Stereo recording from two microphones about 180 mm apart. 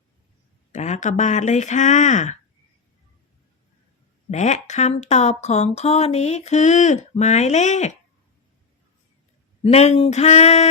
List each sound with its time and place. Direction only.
0.7 s speech: 40° left (ahead or behind)
4.3 s speech: 40° left (ahead or behind)
9.6 s speech: 35° left (ahead or behind)